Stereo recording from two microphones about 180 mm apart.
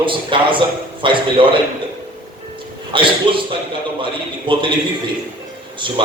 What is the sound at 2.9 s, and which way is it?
Speech, 25° right (ahead or behind).